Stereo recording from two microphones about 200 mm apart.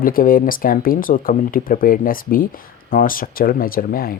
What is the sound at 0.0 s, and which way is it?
Speech, 45° left (ahead or behind).